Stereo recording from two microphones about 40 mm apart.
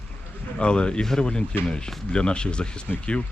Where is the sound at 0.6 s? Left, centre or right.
Left.